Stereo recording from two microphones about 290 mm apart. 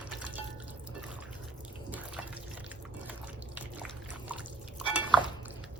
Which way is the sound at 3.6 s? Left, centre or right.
Centre.